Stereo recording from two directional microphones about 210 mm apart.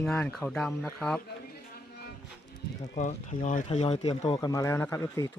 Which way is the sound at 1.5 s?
45° left (ahead or behind).